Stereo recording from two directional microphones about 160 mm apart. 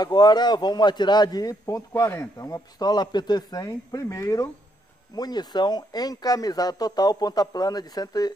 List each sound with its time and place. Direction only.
0.0 s speech: 25° left (ahead or behind)